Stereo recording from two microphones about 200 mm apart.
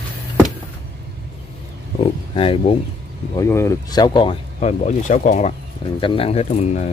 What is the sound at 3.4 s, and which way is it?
Speech, 15° left (ahead or behind).